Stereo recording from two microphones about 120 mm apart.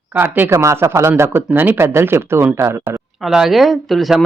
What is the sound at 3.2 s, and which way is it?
Speech, 5° right (ahead or behind).